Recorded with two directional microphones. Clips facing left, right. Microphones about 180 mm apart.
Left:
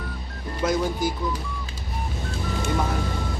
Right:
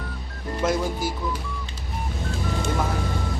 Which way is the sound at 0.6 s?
5° right (ahead or behind).